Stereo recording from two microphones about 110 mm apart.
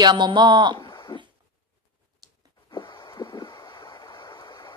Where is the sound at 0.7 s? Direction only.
40° left (ahead or behind).